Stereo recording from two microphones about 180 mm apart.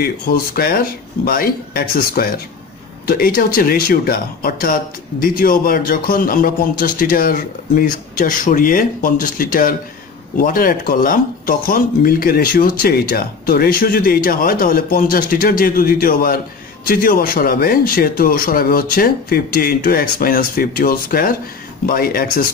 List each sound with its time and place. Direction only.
0.0 s speech: 55° left (ahead or behind)